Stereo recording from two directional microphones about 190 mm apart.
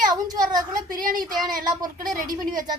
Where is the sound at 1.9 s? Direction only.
45° right (ahead or behind).